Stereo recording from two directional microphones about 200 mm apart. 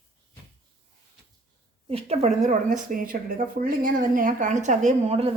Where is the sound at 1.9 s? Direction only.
30° right (ahead or behind).